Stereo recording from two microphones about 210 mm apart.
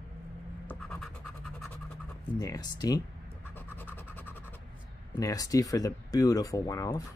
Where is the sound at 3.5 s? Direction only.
10° left (ahead or behind).